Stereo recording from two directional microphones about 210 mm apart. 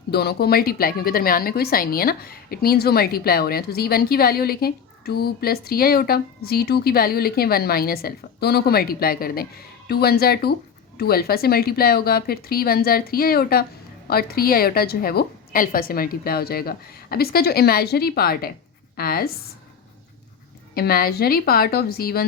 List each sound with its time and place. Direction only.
0.1 s a woman's voice: 50° left (ahead or behind)
20.7 s a woman's voice: 45° left (ahead or behind)